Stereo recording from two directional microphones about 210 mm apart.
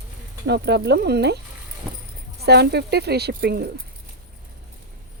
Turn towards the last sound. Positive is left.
turn(degrees=-50)  # may be behind; listen again after turning